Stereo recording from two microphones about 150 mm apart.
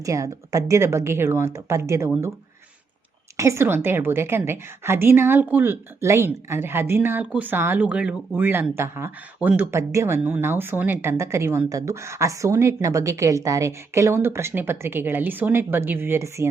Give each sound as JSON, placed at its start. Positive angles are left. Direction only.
{"t": 0.0, "sound": "a woman's voice", "side_deg": -20}
{"t": 3.3, "sound": "a woman's voice", "side_deg": -20}